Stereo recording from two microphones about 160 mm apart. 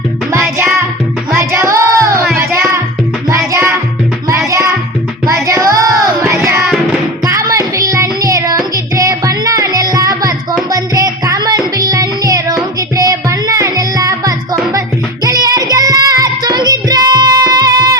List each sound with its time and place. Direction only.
0.3 s music: 10° right (ahead or behind)
5.2 s child singing: 20° right (ahead or behind)
6.4 s music: 15° right (ahead or behind)
7.3 s child singing: 20° right (ahead or behind)
10.7 s music: 20° right (ahead or behind)
13.0 s child singing: 20° right (ahead or behind)